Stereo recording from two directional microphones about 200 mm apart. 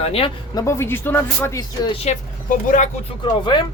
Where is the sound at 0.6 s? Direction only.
10° left (ahead or behind).